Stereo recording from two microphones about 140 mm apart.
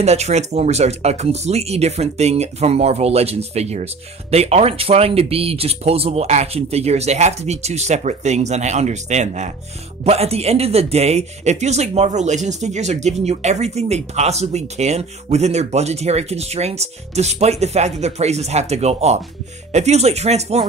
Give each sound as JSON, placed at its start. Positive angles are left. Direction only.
{"t": 0.0, "sound": "speech", "side_deg": -50}